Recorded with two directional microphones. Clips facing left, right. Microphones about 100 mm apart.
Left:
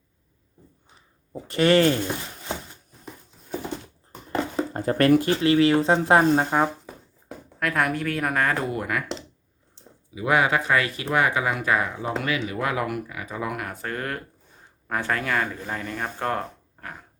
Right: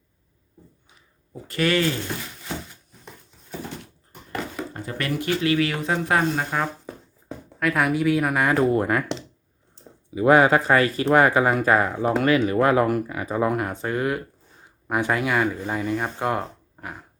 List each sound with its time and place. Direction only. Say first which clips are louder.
1.5 s speech: left 4 dB; 25° left (ahead or behind)
4.3 s a sound: left 5 dB; 30° left (ahead or behind)
4.9 s speech: left 10 dB; 45° left (ahead or behind)
5.3 s speech: left 4 dB; 30° left (ahead or behind)
6.8 s a sound: right 4 dB; centre (ahead or behind)
8.7 s speech: right 6 dB; 35° right (ahead or behind)
10.2 s speech: right 6 dB; 40° right (ahead or behind)
13.8 s speech: right 5 dB; 15° right (ahead or behind)